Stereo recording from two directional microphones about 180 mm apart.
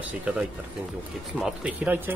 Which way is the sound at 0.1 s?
5° right (ahead or behind).